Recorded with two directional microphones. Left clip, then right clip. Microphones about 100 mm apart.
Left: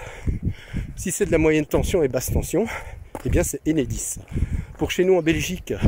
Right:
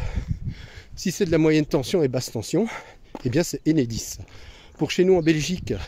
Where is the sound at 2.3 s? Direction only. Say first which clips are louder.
Left 1 dB; 15° right (ahead or behind).